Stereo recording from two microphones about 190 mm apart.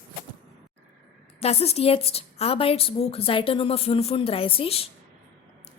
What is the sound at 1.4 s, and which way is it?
A woman's voice, 35° left (ahead or behind).